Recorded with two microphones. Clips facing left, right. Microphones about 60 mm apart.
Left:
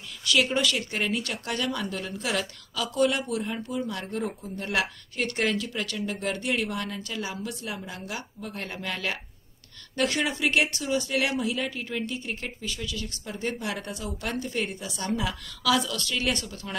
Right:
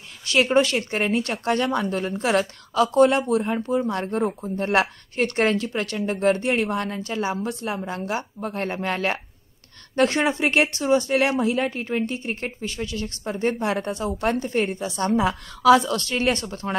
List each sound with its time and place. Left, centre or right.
0.2 s speech: right